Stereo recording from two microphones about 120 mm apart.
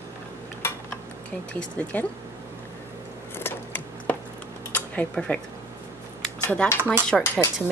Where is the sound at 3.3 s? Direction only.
15° left (ahead or behind).